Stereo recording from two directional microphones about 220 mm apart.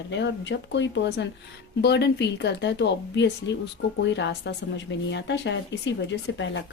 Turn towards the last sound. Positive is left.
turn(degrees=55)  # may be behind; listen again after turning